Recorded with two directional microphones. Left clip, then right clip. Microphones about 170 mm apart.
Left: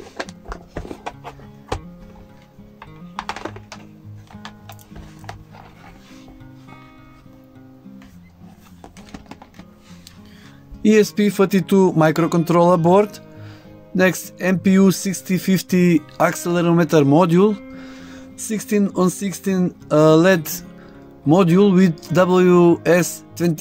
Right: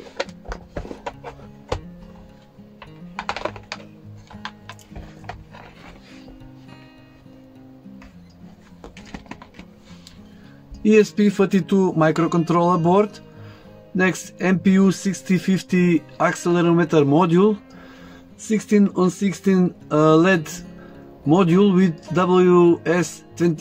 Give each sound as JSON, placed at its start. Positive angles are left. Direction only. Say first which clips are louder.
{"t": 10.8, "sound": "speech", "louder": "left 1 dB", "side_deg": 50}
{"t": 18.0, "sound": "music", "louder": "right 2 dB", "side_deg": 65}
{"t": 18.9, "sound": "speech", "louder": "left 1 dB", "side_deg": 65}